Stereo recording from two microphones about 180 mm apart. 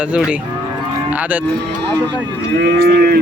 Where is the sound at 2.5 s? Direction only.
60° right (ahead or behind).